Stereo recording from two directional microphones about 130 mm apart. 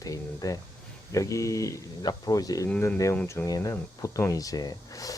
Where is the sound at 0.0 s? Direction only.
25° left (ahead or behind).